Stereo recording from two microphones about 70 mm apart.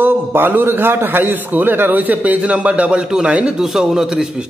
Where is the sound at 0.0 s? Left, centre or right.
Right; by 4.5 s centre.